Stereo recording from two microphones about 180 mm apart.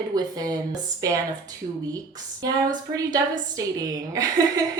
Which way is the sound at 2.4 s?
20° right (ahead or behind).